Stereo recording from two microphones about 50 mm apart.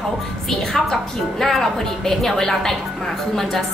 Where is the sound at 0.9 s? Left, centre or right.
Centre.